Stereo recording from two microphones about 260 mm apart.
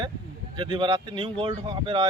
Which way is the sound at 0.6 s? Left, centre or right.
Centre.